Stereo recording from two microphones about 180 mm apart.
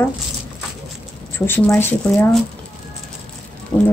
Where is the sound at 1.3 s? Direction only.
10° left (ahead or behind).